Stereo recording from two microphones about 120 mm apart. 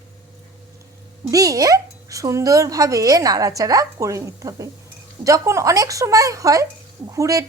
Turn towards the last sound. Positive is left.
turn(degrees=-25)  # may be behind; listen again after turning